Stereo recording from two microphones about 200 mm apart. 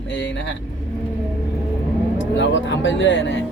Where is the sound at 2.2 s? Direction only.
65° left (ahead or behind).